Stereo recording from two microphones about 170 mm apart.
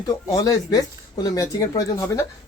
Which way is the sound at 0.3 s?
20° left (ahead or behind).